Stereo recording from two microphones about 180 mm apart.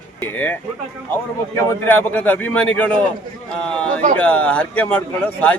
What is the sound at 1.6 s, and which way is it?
A man's voice, 15° left (ahead or behind).